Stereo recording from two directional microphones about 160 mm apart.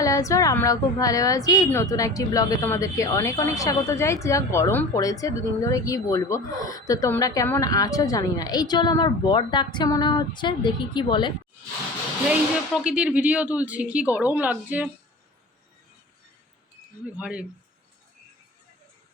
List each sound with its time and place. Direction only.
0.0 s a woman's voice: 20° left (ahead or behind)
12.3 s speech: 5° right (ahead or behind)
17.2 s speech: 5° right (ahead or behind)